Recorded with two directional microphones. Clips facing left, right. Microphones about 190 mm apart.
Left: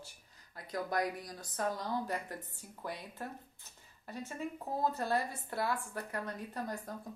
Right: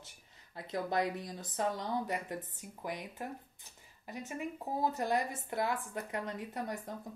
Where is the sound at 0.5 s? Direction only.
25° right (ahead or behind).